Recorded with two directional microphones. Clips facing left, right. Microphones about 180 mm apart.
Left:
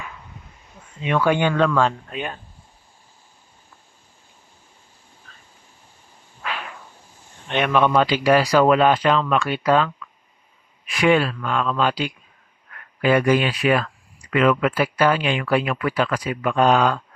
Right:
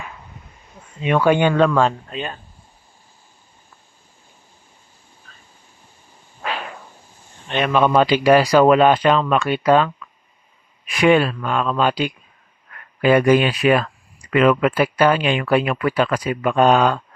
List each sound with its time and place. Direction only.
1.0 s a man's voice: 20° right (ahead or behind)
2.0 s speech: 10° left (ahead or behind)
7.8 s a man's voice: 15° right (ahead or behind)
10.9 s speech: 20° right (ahead or behind)
13.0 s speech: 20° right (ahead or behind)